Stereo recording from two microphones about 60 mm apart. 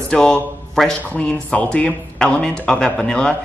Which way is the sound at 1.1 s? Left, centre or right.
Left.